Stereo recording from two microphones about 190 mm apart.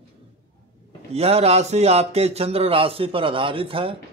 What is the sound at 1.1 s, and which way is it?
Speech, 30° right (ahead or behind).